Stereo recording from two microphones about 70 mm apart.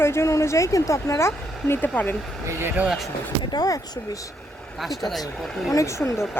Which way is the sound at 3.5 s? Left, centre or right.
Left.